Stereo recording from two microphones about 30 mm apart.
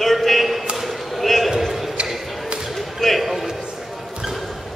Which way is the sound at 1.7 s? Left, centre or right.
Centre.